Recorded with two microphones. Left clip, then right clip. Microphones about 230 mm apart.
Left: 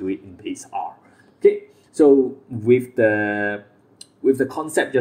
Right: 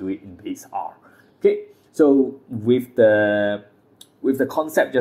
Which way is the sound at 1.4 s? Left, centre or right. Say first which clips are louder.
Left 2 dB; centre.